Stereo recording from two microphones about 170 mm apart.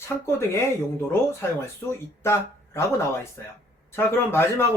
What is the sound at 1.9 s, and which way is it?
Speech, 15° left (ahead or behind).